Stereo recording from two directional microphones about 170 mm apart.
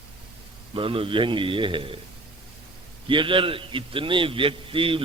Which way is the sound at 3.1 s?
30° right (ahead or behind).